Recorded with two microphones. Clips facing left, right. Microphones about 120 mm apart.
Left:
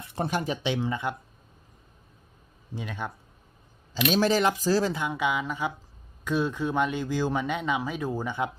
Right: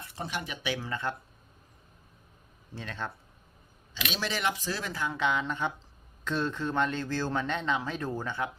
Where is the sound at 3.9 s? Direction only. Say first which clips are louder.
Left 11 dB; 45° left (ahead or behind).